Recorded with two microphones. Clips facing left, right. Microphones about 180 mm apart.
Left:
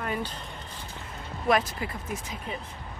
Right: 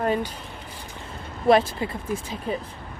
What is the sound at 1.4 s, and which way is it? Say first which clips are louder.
Speech: right 7 dB; 30° right (ahead or behind).